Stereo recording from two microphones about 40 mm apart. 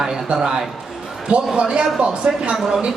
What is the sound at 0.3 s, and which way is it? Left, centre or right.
Speech, right.